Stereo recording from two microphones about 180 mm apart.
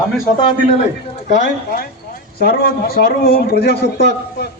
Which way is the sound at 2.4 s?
55° left (ahead or behind).